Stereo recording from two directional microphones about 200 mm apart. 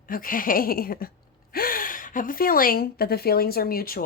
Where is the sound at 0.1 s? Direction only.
45° left (ahead or behind).